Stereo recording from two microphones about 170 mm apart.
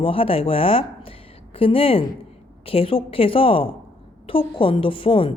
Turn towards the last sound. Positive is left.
turn(degrees=30)  # may be behind; listen again after turning